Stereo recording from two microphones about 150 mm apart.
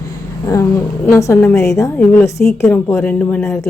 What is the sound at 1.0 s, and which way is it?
A woman's voice, 15° left (ahead or behind).